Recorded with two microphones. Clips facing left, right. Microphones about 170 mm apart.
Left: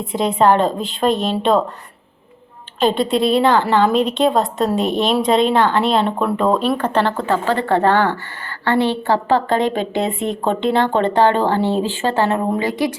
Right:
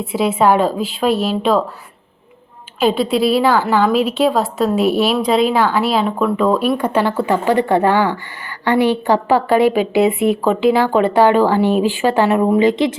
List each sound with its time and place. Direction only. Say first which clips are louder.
0.0 s a woman's voice: right 1 dB; 5° right (ahead or behind)
2.8 s a woman's voice: right 1 dB; centre (ahead or behind); by 12.9 s 20° right (ahead or behind)